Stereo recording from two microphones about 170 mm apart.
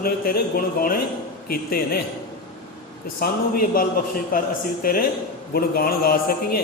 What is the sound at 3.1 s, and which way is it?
A man's voice, 60° left (ahead or behind).